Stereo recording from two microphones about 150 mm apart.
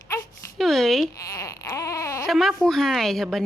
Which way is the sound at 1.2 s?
20° left (ahead or behind).